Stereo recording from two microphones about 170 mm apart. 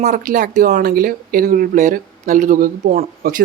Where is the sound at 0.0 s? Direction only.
50° right (ahead or behind).